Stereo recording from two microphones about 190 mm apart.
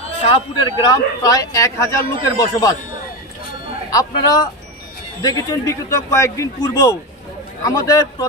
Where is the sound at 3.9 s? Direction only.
20° left (ahead or behind).